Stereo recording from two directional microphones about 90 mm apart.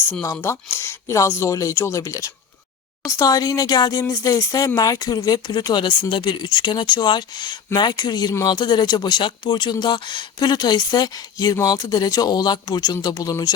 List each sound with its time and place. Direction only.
0.2 s speech: 35° left (ahead or behind)